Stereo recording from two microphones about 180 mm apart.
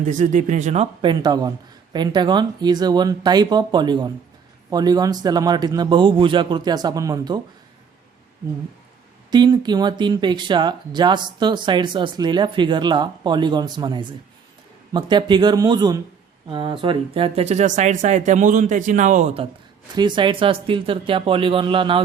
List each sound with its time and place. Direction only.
0.0 s speech: 45° right (ahead or behind)
1.1 s speech: 20° right (ahead or behind)
9.3 s speech: 25° right (ahead or behind)
20.0 s speech: 25° right (ahead or behind)